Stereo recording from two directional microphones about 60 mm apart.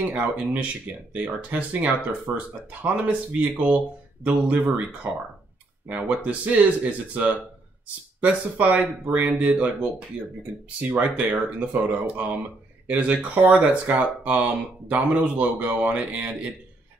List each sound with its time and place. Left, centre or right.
0.0 s speech: right